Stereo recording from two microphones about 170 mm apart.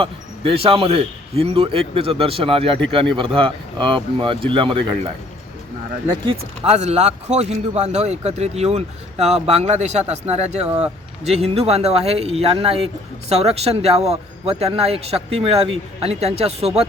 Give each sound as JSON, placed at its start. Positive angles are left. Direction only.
{"t": 0.0, "sound": "a man's voice", "side_deg": -35}
{"t": 6.7, "sound": "a man's voice", "side_deg": -40}